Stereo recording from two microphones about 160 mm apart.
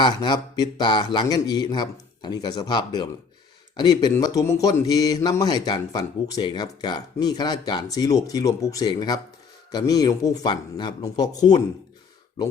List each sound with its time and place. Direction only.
0.0 s speech: 30° left (ahead or behind)